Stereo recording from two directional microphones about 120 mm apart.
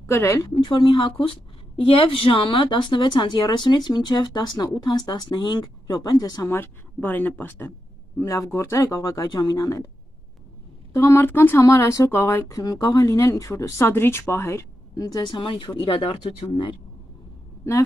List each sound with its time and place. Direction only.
0.0 s speech: 20° left (ahead or behind)
0.4 s speech: 40° left (ahead or behind)
6.5 s speech: 15° left (ahead or behind)
10.9 s speech: 20° left (ahead or behind)
15.1 s speech: 40° left (ahead or behind)